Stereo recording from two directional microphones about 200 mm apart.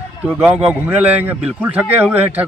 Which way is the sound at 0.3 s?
Centre (ahead or behind).